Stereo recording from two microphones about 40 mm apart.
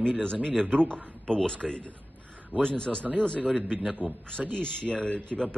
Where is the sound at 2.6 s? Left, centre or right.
Left.